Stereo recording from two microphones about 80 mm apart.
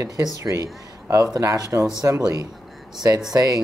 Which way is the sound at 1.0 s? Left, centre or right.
Right.